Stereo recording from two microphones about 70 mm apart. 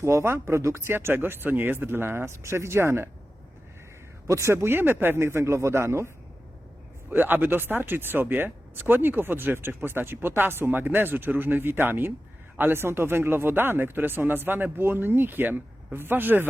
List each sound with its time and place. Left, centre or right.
0.0 s speech: right
4.3 s speech: right
7.1 s speech: right